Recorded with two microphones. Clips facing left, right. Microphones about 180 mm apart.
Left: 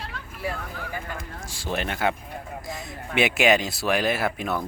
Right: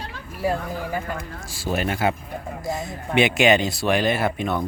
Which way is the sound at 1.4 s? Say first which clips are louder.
Right 4 dB; 5° right (ahead or behind).